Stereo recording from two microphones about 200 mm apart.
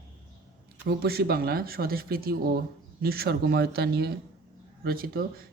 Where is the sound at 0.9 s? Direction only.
50° right (ahead or behind).